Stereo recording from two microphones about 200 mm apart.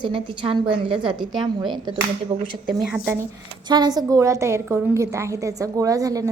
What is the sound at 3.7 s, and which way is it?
A woman's voice, 20° right (ahead or behind).